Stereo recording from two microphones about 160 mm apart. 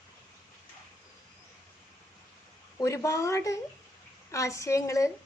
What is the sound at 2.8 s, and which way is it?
A woman's voice, 20° left (ahead or behind).